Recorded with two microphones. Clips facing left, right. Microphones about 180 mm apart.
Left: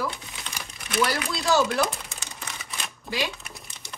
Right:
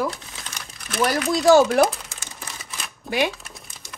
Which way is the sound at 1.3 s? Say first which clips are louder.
Right 10 dB; 45° right (ahead or behind).